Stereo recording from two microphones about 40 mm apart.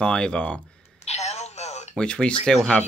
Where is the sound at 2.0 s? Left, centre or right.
Left.